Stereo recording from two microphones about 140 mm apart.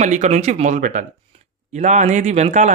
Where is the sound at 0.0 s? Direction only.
60° right (ahead or behind).